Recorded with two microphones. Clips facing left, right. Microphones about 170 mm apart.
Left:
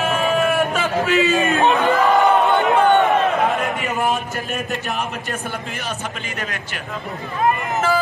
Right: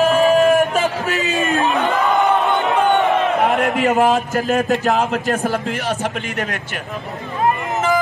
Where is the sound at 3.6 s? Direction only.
90° right.